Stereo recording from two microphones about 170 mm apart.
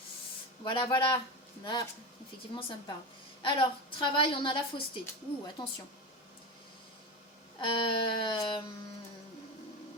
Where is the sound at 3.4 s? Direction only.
30° left (ahead or behind).